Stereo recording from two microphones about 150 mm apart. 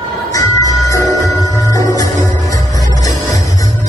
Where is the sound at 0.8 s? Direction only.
20° left (ahead or behind).